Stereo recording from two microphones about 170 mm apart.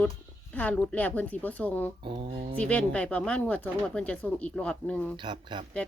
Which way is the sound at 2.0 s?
30° right (ahead or behind).